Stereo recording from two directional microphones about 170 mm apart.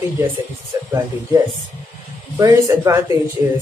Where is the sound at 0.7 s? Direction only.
20° right (ahead or behind).